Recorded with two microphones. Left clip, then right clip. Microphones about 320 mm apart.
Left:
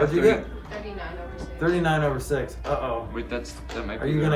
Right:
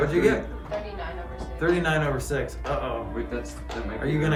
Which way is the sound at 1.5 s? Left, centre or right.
Centre.